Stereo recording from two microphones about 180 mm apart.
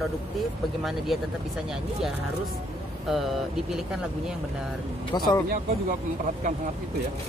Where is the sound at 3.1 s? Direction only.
Centre (ahead or behind).